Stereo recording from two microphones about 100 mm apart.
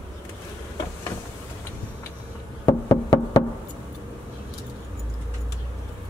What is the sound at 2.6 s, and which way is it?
Knock, 35° left (ahead or behind).